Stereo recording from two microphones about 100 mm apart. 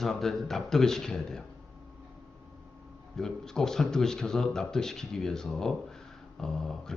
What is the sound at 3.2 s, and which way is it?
A man's voice, 5° left (ahead or behind).